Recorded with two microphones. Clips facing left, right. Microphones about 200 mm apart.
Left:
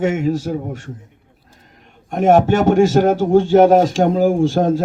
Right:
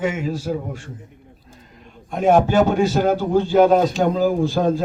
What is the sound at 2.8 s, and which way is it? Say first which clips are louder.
Speech: left 5 dB; 85° left.